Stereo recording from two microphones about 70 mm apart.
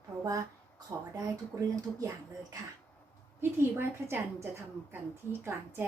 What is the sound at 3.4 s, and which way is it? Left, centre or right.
A woman's voice, right.